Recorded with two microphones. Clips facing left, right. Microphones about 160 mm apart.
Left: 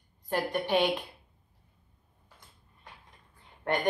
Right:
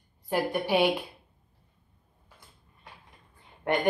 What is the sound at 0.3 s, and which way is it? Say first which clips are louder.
Speech: right 2 dB; 10° right (ahead or behind).